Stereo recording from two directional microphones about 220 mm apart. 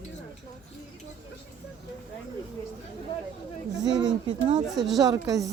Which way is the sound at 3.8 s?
15° right (ahead or behind).